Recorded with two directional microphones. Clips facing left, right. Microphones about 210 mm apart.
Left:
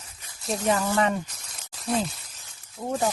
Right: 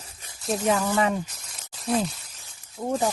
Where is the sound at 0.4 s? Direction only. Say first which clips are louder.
Right 1 dB; centre (ahead or behind).